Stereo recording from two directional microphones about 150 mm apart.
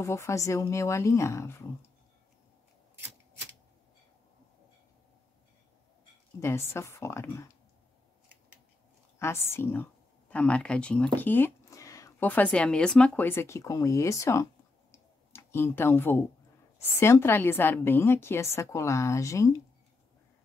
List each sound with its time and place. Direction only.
0.0 s a woman's voice: 20° left (ahead or behind)
6.4 s a woman's voice: 15° left (ahead or behind)
9.2 s a woman's voice: 15° left (ahead or behind)
12.3 s a woman's voice: 10° left (ahead or behind)